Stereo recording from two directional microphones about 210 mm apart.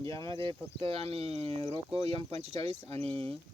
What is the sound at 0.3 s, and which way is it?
Speech, 25° right (ahead or behind).